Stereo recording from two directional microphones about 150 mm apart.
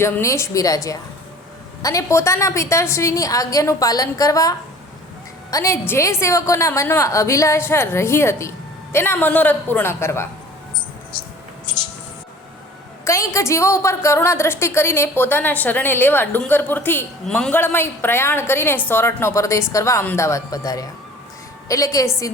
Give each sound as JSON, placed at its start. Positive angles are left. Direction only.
{"t": 0.0, "sound": "a woman's voice", "side_deg": 20}
{"t": 13.1, "sound": "a woman's voice", "side_deg": 20}